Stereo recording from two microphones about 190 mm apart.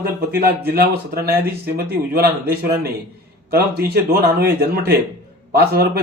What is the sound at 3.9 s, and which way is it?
Speech, 55° right (ahead or behind).